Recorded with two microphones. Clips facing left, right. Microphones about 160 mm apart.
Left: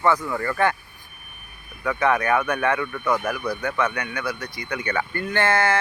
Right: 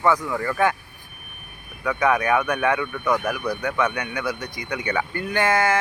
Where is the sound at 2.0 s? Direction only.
10° right (ahead or behind).